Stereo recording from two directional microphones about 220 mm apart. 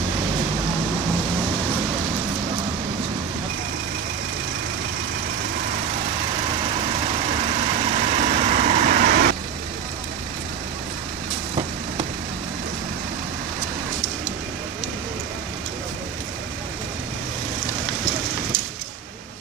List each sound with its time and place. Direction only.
7.9 s vehicle: 30° right (ahead or behind)